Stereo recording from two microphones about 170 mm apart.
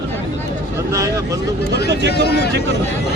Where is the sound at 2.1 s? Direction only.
70° left (ahead or behind).